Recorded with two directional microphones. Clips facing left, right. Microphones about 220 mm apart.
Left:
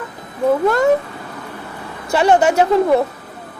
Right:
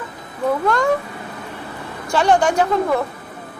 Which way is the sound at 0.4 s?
20° left (ahead or behind).